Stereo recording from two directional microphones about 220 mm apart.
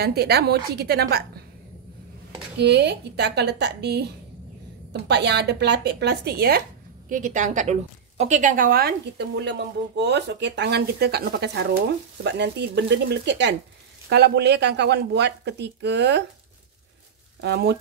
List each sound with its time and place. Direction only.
0.0 s a woman's voice: 45° right (ahead or behind)
2.6 s a woman's voice: 50° right (ahead or behind)
17.4 s a woman's voice: 50° right (ahead or behind)